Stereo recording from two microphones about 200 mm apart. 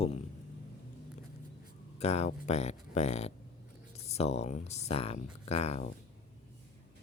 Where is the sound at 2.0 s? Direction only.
30° left (ahead or behind).